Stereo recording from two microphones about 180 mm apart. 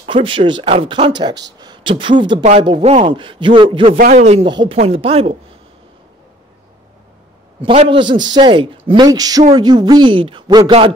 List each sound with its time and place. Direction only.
0.0 s speech: 30° right (ahead or behind)
4.0 s speech: 40° right (ahead or behind)
4.5 s speech: 25° right (ahead or behind)
7.6 s speech: 30° right (ahead or behind)